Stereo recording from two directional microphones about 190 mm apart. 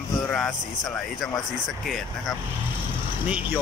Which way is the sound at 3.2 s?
10° right (ahead or behind).